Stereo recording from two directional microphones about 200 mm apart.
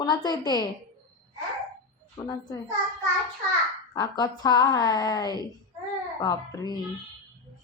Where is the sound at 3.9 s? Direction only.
20° left (ahead or behind).